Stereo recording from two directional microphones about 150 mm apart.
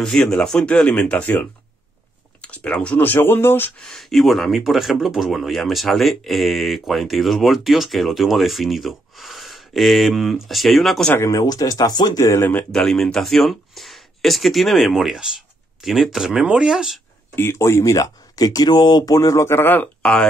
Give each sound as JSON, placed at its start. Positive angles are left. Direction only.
{"t": 0.0, "sound": "speech", "side_deg": 5}
{"t": 3.9, "sound": "speech", "side_deg": 0}
{"t": 11.1, "sound": "speech", "side_deg": 20}
{"t": 17.4, "sound": "speech", "side_deg": 15}